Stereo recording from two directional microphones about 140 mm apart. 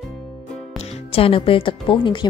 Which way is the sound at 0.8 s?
45° left (ahead or behind).